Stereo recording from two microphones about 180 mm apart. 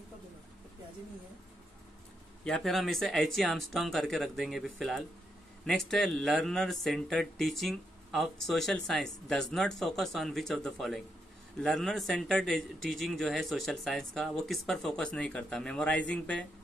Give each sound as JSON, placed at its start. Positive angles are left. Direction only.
{"t": 2.4, "sound": "speech", "side_deg": 0}